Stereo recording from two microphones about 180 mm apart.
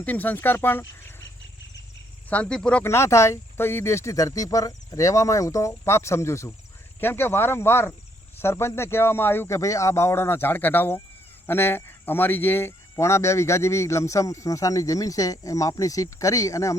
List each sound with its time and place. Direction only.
0.0 s speech: 10° left (ahead or behind)
2.3 s speech: 5° left (ahead or behind)